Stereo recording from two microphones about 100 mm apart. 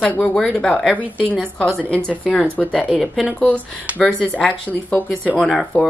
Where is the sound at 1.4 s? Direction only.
10° left (ahead or behind).